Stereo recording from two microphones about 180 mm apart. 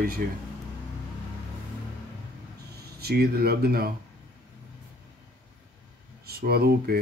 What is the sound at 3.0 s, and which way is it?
Speech, 60° right (ahead or behind).